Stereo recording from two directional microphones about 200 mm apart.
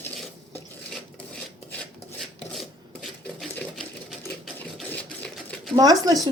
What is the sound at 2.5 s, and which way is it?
Sewing machine, centre (ahead or behind).